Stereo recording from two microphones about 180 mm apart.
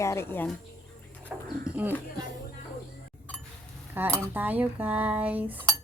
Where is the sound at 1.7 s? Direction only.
10° right (ahead or behind).